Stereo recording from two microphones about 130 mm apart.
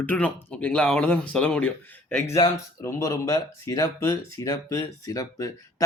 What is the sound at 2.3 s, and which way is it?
Speech, 25° left (ahead or behind).